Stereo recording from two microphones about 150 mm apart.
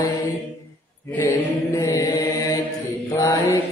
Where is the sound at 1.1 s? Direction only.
10° left (ahead or behind).